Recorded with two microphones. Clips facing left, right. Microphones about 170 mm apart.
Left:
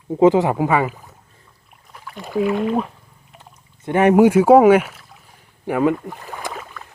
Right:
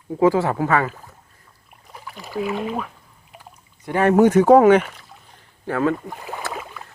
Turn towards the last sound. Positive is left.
turn(degrees=-5)  # may be behind; listen again after turning